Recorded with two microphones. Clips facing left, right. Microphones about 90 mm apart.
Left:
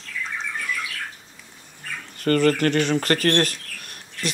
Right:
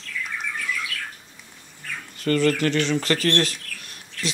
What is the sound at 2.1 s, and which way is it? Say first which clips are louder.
Speech: left 2 dB; 45° left (ahead or behind).